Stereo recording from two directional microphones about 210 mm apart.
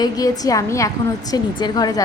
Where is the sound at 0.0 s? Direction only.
15° left (ahead or behind).